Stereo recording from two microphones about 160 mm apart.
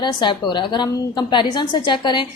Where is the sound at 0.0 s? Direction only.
30° left (ahead or behind).